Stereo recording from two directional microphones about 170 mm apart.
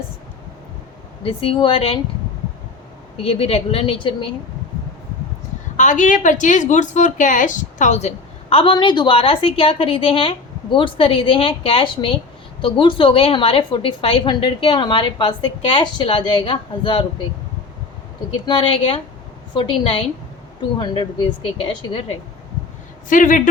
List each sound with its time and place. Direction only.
1.2 s a woman's voice: 35° left (ahead or behind)
3.2 s a woman's voice: 35° left (ahead or behind)
5.7 s a woman's voice: 45° left (ahead or behind); by 17.1 s 30° left (ahead or behind)
18.3 s a woman's voice: 30° left (ahead or behind)
23.0 s speech: 50° left (ahead or behind)